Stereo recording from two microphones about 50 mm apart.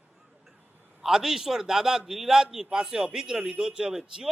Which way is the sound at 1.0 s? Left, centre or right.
Centre.